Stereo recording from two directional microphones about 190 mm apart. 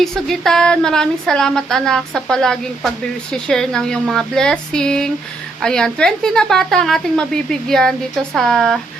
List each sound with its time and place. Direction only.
0.0 s speech: centre (ahead or behind)